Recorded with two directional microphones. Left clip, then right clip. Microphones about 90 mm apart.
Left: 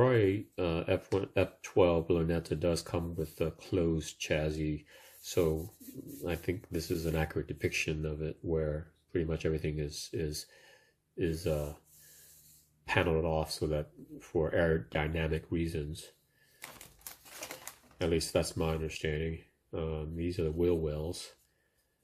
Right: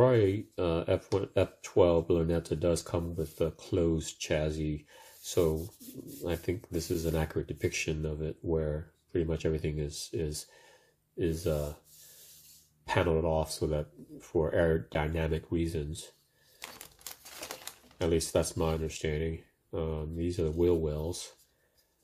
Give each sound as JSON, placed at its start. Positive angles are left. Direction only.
{"t": 0.0, "sound": "speech", "side_deg": -25}
{"t": 12.8, "sound": "speech", "side_deg": -25}
{"t": 17.9, "sound": "speech", "side_deg": -30}